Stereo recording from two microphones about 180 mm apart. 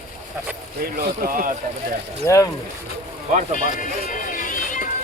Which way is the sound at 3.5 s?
45° left (ahead or behind).